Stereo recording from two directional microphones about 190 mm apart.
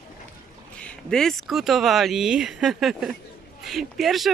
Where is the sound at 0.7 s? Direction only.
5° left (ahead or behind).